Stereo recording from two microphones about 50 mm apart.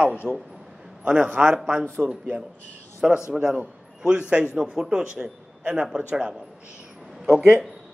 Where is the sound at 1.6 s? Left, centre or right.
Centre.